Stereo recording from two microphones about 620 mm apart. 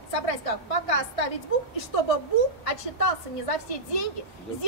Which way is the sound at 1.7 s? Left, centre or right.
Left.